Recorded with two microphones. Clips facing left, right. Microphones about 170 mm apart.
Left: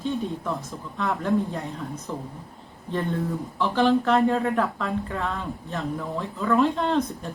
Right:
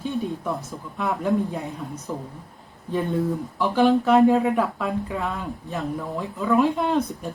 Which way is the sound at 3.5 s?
15° right (ahead or behind).